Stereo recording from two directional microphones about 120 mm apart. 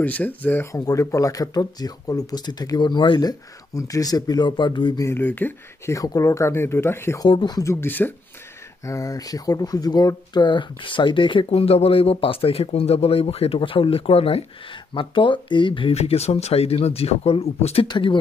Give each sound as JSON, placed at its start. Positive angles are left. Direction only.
{"t": 0.0, "sound": "speech", "side_deg": 15}
{"t": 0.7, "sound": "speech", "side_deg": 30}
{"t": 5.0, "sound": "speech", "side_deg": 15}
{"t": 5.9, "sound": "speech", "side_deg": 30}
{"t": 7.2, "sound": "speech", "side_deg": 40}
{"t": 7.6, "sound": "speech", "side_deg": 20}
{"t": 8.8, "sound": "speech", "side_deg": 25}
{"t": 16.0, "sound": "speech", "side_deg": 60}
{"t": 17.8, "sound": "speech", "side_deg": 40}